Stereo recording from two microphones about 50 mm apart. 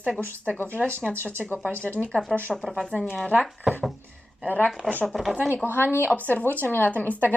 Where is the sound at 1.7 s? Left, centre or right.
Left.